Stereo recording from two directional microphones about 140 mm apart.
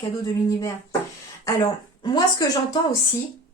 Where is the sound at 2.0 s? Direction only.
30° left (ahead or behind).